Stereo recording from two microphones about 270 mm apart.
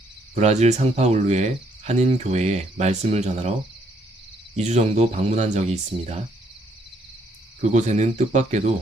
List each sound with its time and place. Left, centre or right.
0.3 s speech: right
4.5 s speech: right
7.6 s speech: right